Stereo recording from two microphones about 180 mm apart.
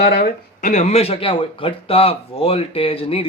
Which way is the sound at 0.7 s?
40° left (ahead or behind).